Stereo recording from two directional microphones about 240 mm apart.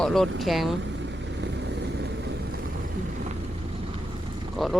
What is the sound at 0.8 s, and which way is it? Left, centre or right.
Vehicle, right.